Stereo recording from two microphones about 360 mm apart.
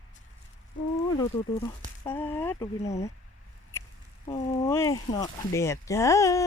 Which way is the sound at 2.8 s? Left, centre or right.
Centre.